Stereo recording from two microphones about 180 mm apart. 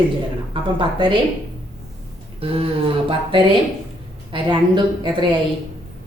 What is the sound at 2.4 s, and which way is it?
A woman's voice, 30° right (ahead or behind).